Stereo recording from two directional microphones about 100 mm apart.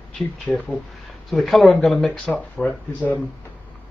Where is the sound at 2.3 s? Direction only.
15° left (ahead or behind).